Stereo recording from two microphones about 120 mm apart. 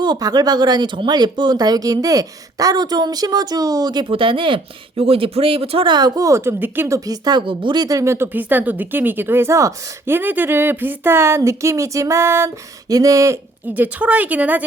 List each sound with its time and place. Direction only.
0.0 s speech: 35° right (ahead or behind)
4.1 s speech: 45° right (ahead or behind); by 10.2 s 25° right (ahead or behind)
10.2 s speech: 15° right (ahead or behind)